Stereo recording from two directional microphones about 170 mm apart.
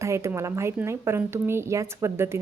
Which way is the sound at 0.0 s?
15° right (ahead or behind).